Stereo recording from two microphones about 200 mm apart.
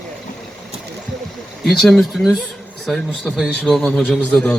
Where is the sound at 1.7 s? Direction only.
Centre (ahead or behind).